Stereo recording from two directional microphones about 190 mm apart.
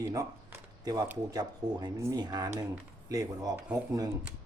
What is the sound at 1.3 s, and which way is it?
Speech, 20° right (ahead or behind).